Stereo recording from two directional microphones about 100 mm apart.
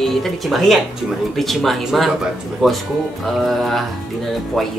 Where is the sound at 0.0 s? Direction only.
Centre (ahead or behind).